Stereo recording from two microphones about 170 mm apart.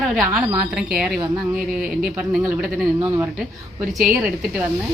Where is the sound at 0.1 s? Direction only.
Centre (ahead or behind).